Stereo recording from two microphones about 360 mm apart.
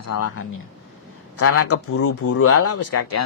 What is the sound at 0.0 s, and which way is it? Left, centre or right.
Speech, left.